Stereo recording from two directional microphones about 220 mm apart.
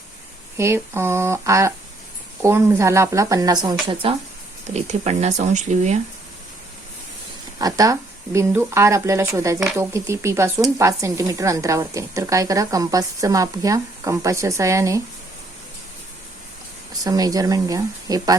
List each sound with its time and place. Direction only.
0.5 s speech: 10° right (ahead or behind); by 6.0 s 30° right (ahead or behind)
7.6 s speech: 15° right (ahead or behind)
9.6 s speech: 5° right (ahead or behind)
9.9 s speech: 15° right (ahead or behind)
17.0 s speech: 15° right (ahead or behind)